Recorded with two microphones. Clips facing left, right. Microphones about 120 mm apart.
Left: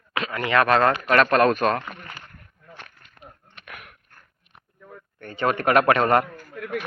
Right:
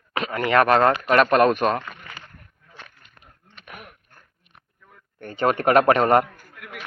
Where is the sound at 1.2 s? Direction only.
10° right (ahead or behind).